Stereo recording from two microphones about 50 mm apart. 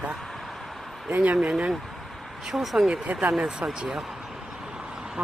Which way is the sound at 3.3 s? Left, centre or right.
Centre.